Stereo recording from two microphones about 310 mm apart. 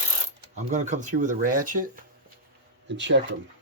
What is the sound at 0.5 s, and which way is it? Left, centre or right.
Speech, right.